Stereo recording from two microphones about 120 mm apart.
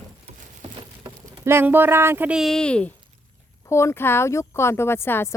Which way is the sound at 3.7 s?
25° left (ahead or behind).